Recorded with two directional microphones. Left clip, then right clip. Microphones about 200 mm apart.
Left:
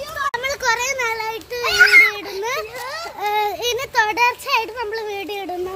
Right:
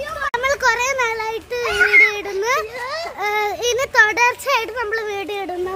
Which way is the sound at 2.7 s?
Centre (ahead or behind).